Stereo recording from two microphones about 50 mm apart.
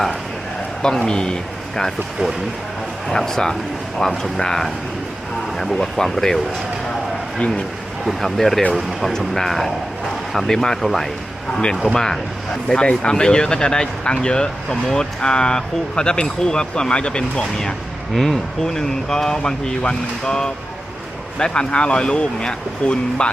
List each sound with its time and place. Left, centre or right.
0.8 s speech: centre
8.0 s speech: centre; by 23.3 s left